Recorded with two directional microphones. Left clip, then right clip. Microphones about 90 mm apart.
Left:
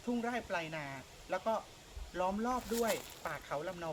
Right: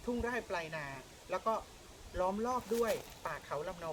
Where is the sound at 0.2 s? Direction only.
5° right (ahead or behind).